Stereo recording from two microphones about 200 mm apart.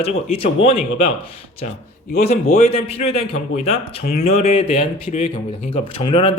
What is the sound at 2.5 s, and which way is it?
Speech, 35° left (ahead or behind).